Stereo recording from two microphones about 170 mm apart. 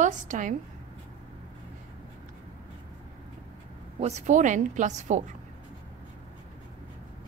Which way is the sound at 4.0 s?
40° right (ahead or behind).